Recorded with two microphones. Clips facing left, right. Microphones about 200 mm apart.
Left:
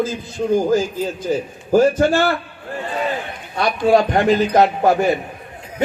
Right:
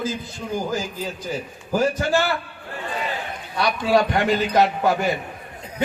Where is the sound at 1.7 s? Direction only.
50° left (ahead or behind).